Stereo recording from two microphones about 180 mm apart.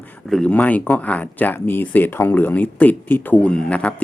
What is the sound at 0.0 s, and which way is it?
Speech, 5° left (ahead or behind).